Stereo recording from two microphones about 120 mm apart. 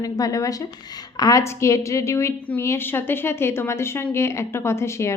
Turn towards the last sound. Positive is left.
turn(degrees=20)  # may be behind; listen again after turning